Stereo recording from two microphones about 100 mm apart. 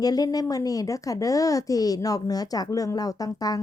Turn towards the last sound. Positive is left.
turn(degrees=40)  # may be behind; listen again after turning